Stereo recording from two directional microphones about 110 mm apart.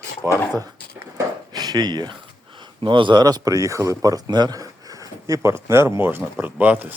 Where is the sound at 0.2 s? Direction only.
25° right (ahead or behind).